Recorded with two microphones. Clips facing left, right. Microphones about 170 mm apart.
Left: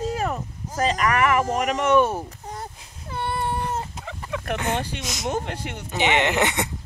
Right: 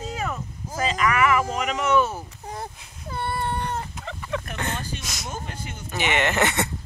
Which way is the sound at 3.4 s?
5° left (ahead or behind).